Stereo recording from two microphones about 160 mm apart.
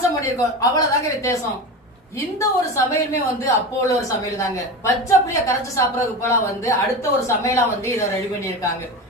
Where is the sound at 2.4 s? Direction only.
20° left (ahead or behind).